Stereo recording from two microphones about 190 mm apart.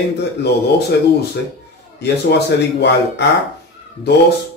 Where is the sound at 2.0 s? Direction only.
65° left (ahead or behind).